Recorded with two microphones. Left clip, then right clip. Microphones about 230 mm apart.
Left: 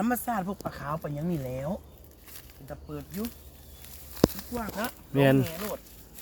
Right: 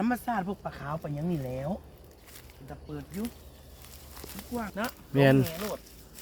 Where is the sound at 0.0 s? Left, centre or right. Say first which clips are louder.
Left 1 dB; left.